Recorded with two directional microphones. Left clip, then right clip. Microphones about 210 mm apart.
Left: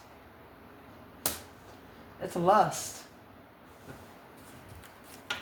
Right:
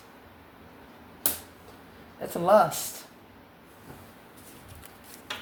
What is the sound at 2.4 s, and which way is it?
Speech, 35° right (ahead or behind).